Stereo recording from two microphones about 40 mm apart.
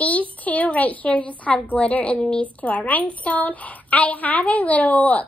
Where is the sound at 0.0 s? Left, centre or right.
Left.